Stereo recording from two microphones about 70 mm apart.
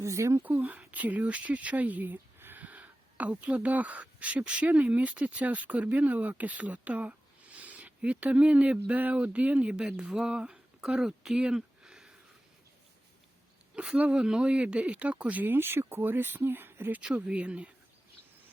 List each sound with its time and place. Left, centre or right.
0.0 s speech: right
0.4 s speech: right
13.7 s speech: centre; by 17.0 s right
17.2 s speech: centre